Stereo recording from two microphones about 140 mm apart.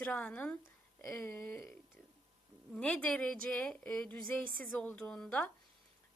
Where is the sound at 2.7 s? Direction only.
10° left (ahead or behind).